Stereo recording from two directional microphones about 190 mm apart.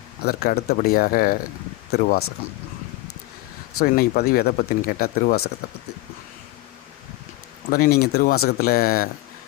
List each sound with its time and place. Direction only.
0.2 s speech: 55° left (ahead or behind)
3.8 s speech: 50° left (ahead or behind)
7.7 s speech: 55° left (ahead or behind)